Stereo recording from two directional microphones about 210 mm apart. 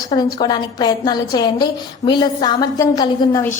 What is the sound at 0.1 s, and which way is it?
A woman's voice, 20° left (ahead or behind).